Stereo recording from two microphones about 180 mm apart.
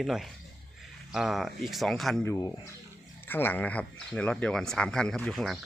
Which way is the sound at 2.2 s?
15° left (ahead or behind).